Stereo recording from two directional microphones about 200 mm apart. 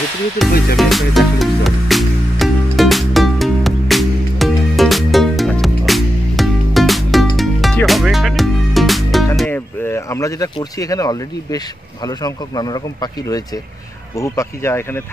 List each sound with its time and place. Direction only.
0.7 s music: centre (ahead or behind)
9.4 s speech: 10° left (ahead or behind)